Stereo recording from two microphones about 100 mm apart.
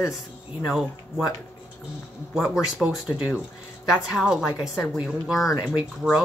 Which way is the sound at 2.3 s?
5° right (ahead or behind).